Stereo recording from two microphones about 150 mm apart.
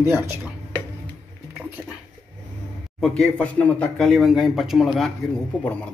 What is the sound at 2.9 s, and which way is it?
Speech, 5° left (ahead or behind).